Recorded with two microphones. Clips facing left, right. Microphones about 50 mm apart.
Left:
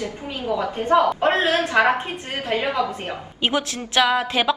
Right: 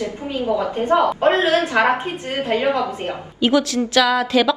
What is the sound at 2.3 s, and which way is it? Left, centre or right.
Speech, right.